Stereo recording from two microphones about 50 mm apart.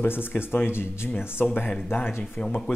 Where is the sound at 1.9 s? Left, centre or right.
Left.